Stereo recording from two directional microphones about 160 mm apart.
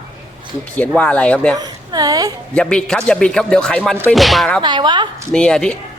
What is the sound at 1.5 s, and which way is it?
Speech, 25° right (ahead or behind).